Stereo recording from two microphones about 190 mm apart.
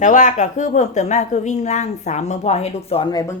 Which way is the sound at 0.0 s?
40° left (ahead or behind).